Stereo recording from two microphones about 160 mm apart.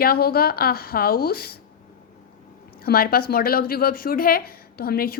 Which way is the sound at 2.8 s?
70° left (ahead or behind).